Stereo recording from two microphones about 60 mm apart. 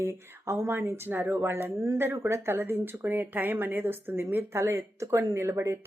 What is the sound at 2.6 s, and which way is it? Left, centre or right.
A woman's voice, right.